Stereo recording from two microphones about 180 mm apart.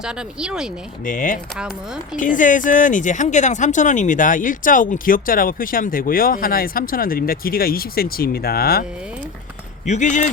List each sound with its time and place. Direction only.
0.0 s speech: 5° right (ahead or behind)
1.0 s speech: 50° left (ahead or behind)
9.8 s speech: 40° left (ahead or behind)